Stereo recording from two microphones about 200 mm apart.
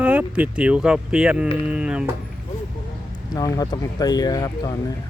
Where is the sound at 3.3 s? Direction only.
20° left (ahead or behind).